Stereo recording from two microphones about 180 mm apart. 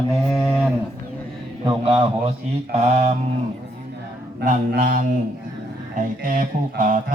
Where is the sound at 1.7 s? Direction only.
30° right (ahead or behind).